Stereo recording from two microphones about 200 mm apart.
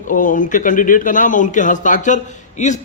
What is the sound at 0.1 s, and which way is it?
Speech, 40° left (ahead or behind).